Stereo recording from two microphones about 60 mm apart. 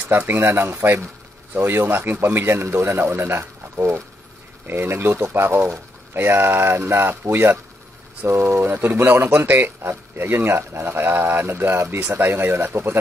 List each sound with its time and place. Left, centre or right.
0.1 s speech: right